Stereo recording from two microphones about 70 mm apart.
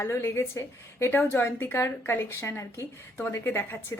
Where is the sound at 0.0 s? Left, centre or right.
Left.